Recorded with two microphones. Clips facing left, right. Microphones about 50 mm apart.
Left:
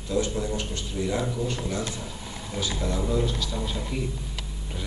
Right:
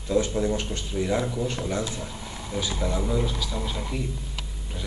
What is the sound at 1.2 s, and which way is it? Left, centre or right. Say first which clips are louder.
Speech: right 1 dB; centre.